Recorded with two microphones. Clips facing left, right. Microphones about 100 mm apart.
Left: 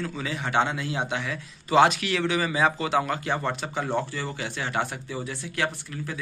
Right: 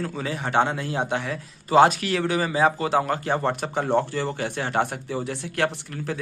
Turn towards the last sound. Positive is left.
turn(degrees=-60)  # may be behind; listen again after turning